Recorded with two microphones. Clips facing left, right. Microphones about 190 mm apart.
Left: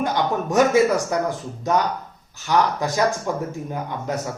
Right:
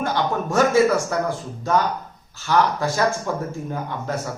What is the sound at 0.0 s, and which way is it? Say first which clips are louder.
Speech: left 1 dB; 15° left (ahead or behind).